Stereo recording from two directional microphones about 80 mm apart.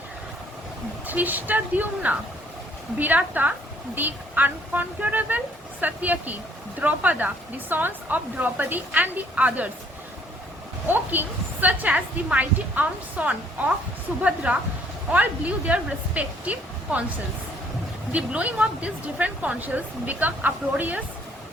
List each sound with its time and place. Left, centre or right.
1.0 s a woman's voice: right
10.8 s a woman's voice: right
18.1 s a woman's voice: centre